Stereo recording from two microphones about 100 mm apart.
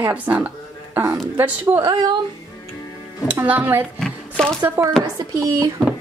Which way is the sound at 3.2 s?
15° right (ahead or behind).